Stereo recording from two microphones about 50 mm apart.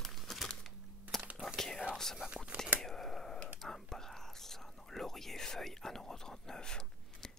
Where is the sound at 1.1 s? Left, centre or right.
Centre.